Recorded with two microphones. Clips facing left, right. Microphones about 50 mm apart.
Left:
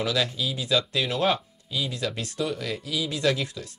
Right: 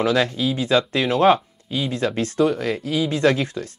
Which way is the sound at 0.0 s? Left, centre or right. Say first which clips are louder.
Right 7 dB; right.